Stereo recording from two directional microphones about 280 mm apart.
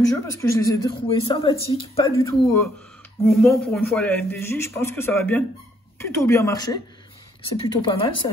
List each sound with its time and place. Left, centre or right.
0.2 s speech: centre